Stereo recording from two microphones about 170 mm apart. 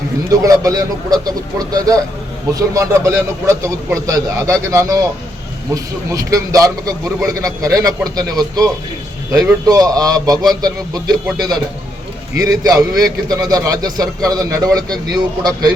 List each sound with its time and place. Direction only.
0.3 s a man's voice: 20° right (ahead or behind)